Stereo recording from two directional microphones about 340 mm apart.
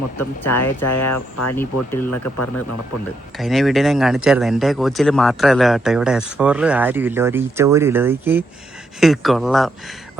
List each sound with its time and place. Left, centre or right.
0.5 s speech: left
1.5 s speech: centre
2.0 s speech: left
3.3 s speech: centre